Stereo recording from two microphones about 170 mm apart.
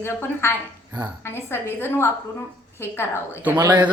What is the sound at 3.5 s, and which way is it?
Speech, 20° right (ahead or behind).